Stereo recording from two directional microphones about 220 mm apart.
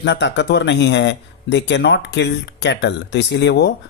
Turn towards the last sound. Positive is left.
turn(degrees=50)  # may be behind; listen again after turning